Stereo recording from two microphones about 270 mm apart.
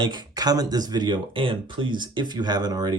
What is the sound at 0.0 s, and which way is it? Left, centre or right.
Speech, centre.